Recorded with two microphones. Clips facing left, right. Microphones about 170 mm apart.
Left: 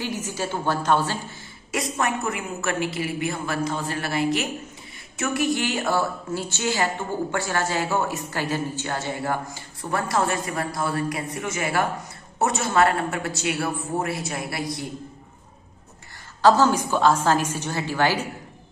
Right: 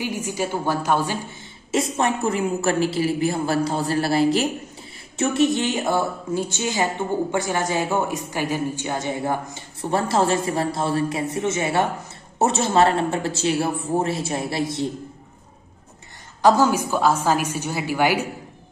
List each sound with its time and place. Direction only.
0.0 s a woman's voice: 10° right (ahead or behind)
1.7 s a woman's voice: 25° right (ahead or behind)
16.4 s a woman's voice: 10° right (ahead or behind)